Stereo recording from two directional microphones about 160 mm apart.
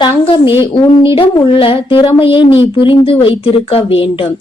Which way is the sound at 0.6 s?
30° left (ahead or behind).